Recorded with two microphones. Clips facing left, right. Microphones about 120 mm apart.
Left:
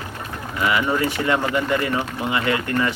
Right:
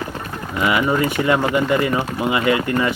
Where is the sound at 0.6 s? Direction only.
15° right (ahead or behind).